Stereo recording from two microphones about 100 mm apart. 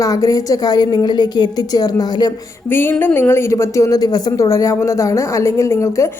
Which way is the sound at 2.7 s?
20° left (ahead or behind).